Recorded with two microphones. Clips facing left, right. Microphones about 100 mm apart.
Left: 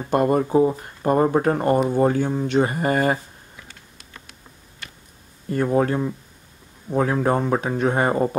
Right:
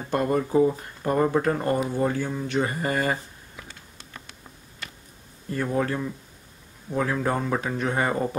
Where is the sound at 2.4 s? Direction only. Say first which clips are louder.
Left 5 dB; 50° left (ahead or behind).